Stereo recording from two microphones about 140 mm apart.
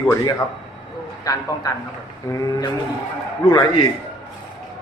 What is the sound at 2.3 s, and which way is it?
Speech, 25° left (ahead or behind).